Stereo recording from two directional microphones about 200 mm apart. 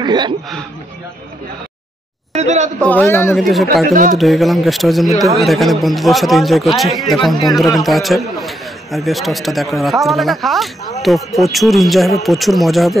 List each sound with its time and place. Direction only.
0.0 s speech: 20° right (ahead or behind)
2.3 s speech: 35° right (ahead or behind)
2.8 s a man's voice: 10° left (ahead or behind)
3.3 s a man's voice: centre (ahead or behind)